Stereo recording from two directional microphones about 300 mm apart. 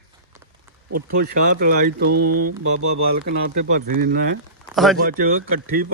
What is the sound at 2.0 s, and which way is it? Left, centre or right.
Speech, right.